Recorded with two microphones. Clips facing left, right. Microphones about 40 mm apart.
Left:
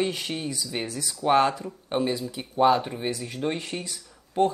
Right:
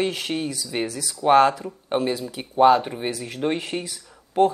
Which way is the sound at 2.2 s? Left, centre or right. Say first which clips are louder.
Right 2 dB; right.